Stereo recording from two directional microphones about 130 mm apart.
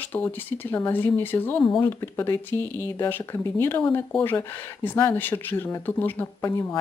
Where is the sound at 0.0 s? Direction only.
15° left (ahead or behind).